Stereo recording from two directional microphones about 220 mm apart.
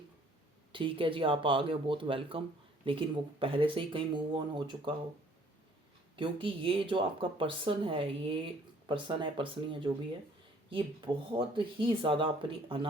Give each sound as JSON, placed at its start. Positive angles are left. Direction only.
{"t": 0.7, "sound": "speech", "side_deg": -20}
{"t": 6.1, "sound": "speech", "side_deg": -25}